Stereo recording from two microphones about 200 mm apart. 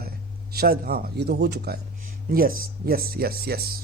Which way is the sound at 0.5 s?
50° right (ahead or behind).